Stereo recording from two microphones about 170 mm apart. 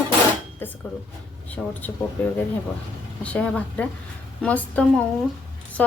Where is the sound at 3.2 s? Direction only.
5° left (ahead or behind).